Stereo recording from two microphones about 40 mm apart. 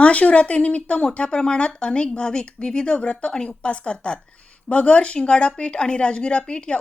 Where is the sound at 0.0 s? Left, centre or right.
Left.